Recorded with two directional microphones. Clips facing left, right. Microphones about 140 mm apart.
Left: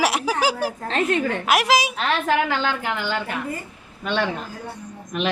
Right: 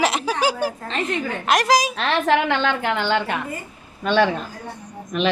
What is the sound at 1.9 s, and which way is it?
A woman's voice, 75° right (ahead or behind).